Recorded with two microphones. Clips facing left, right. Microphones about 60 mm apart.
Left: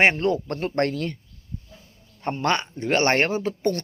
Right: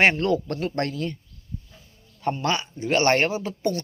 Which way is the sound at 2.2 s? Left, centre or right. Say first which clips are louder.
Left 1 dB; left.